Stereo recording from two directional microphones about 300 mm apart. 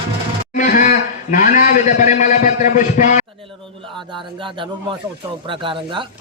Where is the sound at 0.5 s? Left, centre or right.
Left.